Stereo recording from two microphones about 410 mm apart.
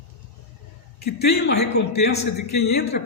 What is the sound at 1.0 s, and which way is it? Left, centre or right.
A man's voice, left.